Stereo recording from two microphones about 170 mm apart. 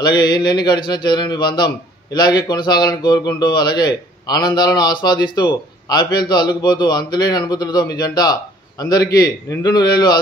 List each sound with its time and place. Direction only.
0.0 s speech: 25° left (ahead or behind)